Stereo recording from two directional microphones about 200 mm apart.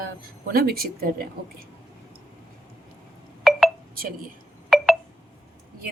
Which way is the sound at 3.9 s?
45° right (ahead or behind).